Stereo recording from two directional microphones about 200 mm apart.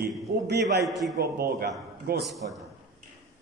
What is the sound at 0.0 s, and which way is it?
Speech, 55° right (ahead or behind).